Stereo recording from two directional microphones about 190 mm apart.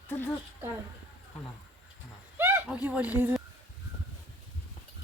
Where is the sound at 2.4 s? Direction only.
10° right (ahead or behind).